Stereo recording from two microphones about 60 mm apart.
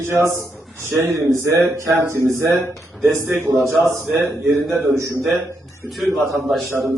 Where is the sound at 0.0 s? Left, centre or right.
Right.